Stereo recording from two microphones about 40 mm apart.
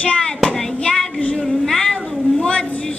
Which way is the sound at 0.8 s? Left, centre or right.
Left.